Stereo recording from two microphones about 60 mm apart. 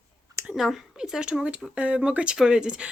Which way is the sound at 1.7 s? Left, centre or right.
Right.